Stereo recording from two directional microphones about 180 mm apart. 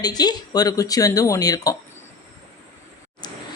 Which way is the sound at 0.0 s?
20° left (ahead or behind).